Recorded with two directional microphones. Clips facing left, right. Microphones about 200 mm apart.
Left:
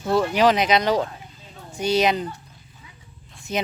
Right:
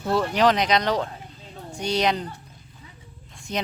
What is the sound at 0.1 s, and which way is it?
Speech, 5° left (ahead or behind).